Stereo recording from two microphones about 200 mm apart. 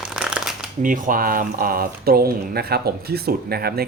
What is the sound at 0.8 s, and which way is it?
Speech, 45° right (ahead or behind).